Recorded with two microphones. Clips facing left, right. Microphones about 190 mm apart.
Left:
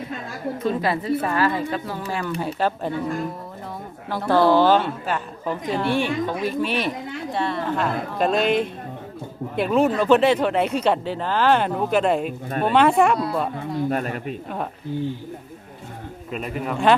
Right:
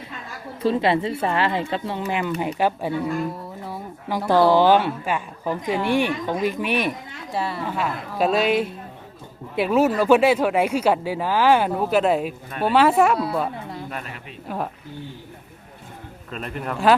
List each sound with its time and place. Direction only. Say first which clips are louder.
0.6 s a woman's voice: right 4 dB; 30° right (ahead or behind); by 3.1 s 10° right (ahead or behind)
4.1 s a woman's voice: even; 10° right (ahead or behind)
13.9 s speech: left 9 dB; 45° left (ahead or behind)
14.4 s a woman's voice: right 1 dB; 5° right (ahead or behind)
16.3 s a woman's voice: left 2 dB; 5° left (ahead or behind)